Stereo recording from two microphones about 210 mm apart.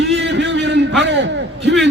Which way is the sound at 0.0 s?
55° right (ahead or behind).